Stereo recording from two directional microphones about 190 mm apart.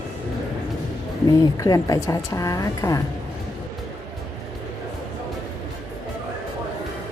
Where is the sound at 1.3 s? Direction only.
15° left (ahead or behind).